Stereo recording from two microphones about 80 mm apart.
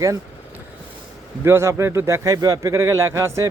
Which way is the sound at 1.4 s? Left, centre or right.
Right.